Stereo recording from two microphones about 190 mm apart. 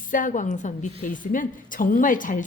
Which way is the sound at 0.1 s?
45° left (ahead or behind).